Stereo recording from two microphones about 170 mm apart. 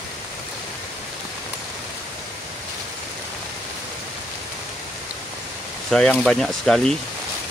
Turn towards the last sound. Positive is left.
turn(degrees=0)  # may be behind; listen again after turning